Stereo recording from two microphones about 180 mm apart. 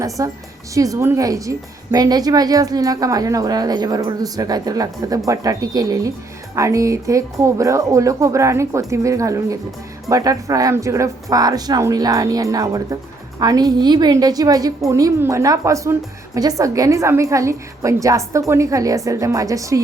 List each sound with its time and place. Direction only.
0.2 s a woman's voice: 20° right (ahead or behind)